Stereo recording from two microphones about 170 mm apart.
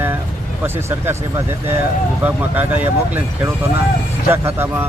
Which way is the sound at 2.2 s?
10° right (ahead or behind).